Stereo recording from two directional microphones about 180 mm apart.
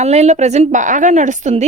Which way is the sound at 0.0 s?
40° right (ahead or behind).